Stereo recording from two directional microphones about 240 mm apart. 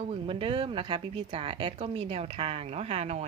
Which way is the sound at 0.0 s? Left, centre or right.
Right.